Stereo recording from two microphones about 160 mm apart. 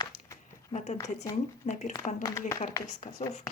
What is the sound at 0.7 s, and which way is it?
Speech, 45° left (ahead or behind).